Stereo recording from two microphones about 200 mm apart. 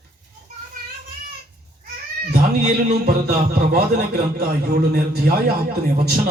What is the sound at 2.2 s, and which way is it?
Speech, 50° right (ahead or behind).